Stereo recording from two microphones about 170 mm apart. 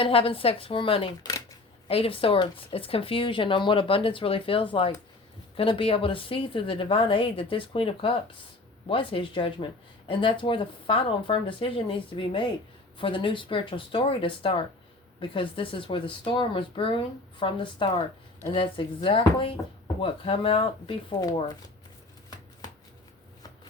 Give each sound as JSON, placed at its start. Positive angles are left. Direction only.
{"t": 0.0, "sound": "a woman's voice", "side_deg": 30}